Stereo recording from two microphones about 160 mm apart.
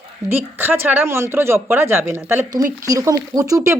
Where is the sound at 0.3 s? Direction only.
15° right (ahead or behind).